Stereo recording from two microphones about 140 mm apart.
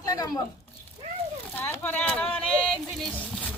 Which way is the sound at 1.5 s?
15° left (ahead or behind).